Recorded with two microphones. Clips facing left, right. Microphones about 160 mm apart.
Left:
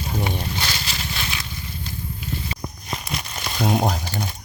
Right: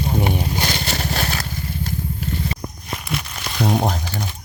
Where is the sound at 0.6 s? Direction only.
40° right (ahead or behind).